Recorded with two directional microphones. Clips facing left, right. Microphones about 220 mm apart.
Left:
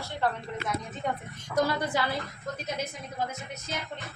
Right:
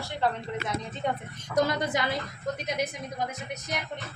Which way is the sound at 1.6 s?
20° right (ahead or behind).